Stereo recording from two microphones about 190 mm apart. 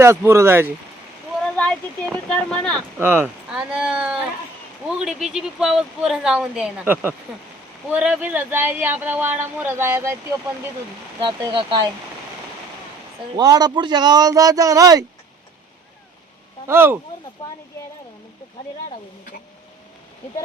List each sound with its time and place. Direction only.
0.0 s speech: 15° right (ahead or behind)
1.5 s a sound: 5° left (ahead or behind)
2.1 s speech: 5° left (ahead or behind)
3.0 s speech: 10° right (ahead or behind)
11.2 s speech: 25° right (ahead or behind)
13.3 s speech: 20° right (ahead or behind)
16.6 s speech: 10° right (ahead or behind)
17.4 s speech: 20° left (ahead or behind)